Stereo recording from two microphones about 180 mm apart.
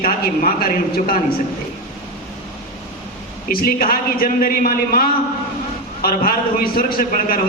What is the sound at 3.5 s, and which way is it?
A man's voice, 55° left (ahead or behind).